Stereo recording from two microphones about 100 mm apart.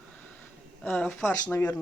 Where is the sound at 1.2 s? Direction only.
20° left (ahead or behind).